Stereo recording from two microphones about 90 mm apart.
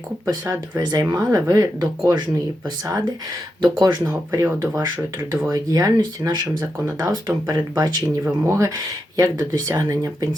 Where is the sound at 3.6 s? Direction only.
50° right (ahead or behind).